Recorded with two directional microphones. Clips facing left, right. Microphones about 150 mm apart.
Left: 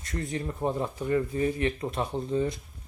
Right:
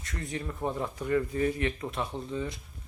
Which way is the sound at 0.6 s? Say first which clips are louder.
Left 3 dB; 25° left (ahead or behind).